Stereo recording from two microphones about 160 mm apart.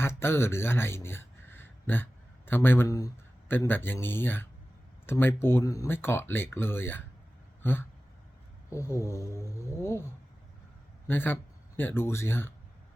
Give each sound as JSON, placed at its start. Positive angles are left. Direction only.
{"t": 0.0, "sound": "speech", "side_deg": 15}
{"t": 7.6, "sound": "a sound", "side_deg": 15}
{"t": 8.7, "sound": "speech", "side_deg": 20}
{"t": 11.1, "sound": "speech", "side_deg": 15}